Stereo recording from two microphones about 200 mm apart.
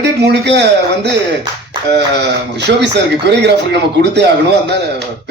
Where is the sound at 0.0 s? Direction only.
60° right (ahead or behind).